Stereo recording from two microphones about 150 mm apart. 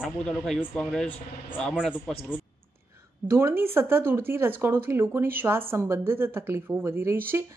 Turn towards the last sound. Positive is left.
turn(degrees=-15)  # may be behind; listen again after turning